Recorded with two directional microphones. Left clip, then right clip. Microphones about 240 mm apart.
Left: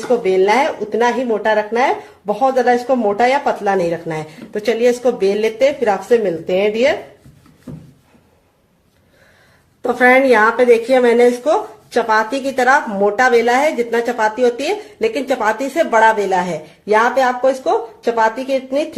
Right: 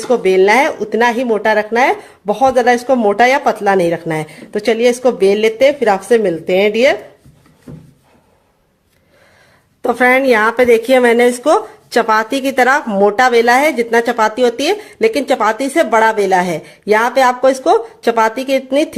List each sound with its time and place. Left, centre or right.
0.1 s speech: right
9.8 s speech: right